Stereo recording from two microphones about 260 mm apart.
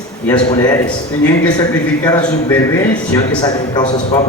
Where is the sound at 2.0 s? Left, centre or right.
Centre.